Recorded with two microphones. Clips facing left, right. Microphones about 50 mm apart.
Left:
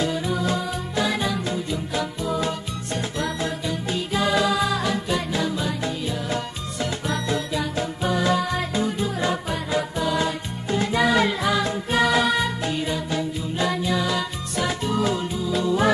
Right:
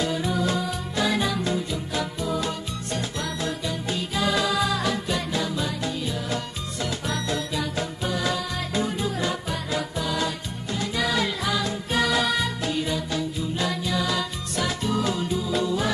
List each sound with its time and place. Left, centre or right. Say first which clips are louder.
0.0 s music: left 1 dB; centre
8.7 s music: right 2 dB; centre
9.2 s music: left 3 dB; centre
10.8 s music: left 5 dB; left; by 15.2 s centre
15.4 s music: left 4 dB; centre